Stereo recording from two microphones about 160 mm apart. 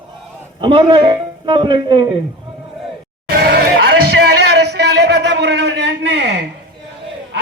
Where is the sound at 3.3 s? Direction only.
75° right (ahead or behind).